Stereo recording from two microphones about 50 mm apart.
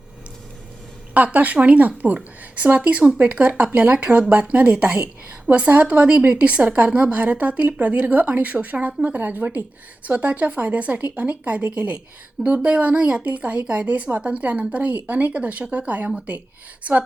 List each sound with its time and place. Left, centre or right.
1.1 s a woman's voice: right